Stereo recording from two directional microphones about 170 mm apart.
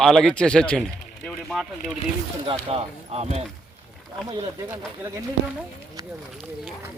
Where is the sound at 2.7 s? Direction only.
35° right (ahead or behind).